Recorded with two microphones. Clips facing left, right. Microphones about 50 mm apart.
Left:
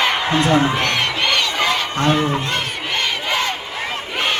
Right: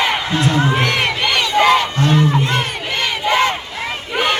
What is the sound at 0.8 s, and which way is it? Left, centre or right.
Crowd, centre.